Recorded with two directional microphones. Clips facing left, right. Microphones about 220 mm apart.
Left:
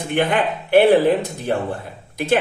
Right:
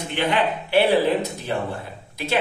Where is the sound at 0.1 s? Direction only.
50° left (ahead or behind).